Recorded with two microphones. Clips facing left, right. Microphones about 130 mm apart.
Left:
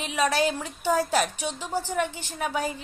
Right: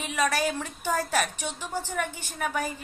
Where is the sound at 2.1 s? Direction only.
10° right (ahead or behind).